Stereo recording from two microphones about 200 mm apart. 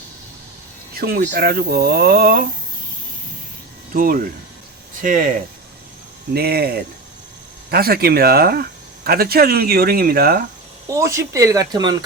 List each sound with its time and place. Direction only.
0.9 s speech: 50° right (ahead or behind)
3.9 s speech: 45° right (ahead or behind)
6.3 s speech: 50° right (ahead or behind)
10.9 s speech: 15° right (ahead or behind)